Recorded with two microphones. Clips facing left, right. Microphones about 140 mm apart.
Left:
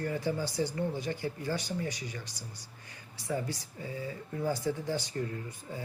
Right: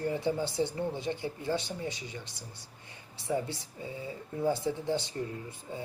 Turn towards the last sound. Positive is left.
turn(degrees=-25)  # may be behind; listen again after turning